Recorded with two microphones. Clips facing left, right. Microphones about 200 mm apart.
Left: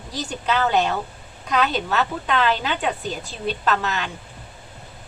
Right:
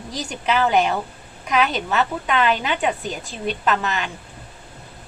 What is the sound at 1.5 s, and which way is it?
A woman's voice, centre (ahead or behind).